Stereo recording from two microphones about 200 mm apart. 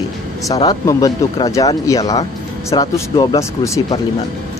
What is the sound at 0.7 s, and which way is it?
Speech, 20° left (ahead or behind).